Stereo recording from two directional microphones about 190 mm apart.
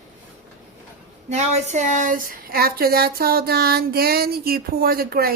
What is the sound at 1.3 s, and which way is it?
Speech, 35° right (ahead or behind).